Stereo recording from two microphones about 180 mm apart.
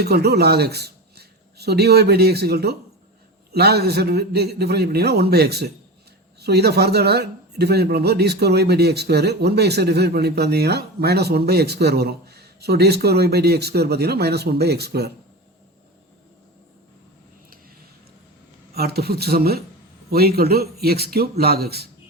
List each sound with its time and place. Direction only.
0.0 s a man's voice: 65° right (ahead or behind)
18.7 s a man's voice: 60° right (ahead or behind)